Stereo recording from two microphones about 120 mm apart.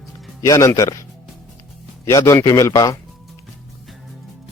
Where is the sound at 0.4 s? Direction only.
25° left (ahead or behind).